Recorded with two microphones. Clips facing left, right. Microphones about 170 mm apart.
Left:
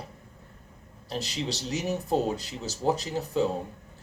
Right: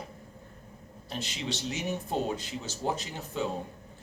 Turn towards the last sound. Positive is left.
turn(degrees=35)  # may be behind; listen again after turning